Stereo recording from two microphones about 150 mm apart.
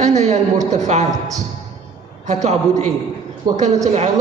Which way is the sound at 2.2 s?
50° right (ahead or behind).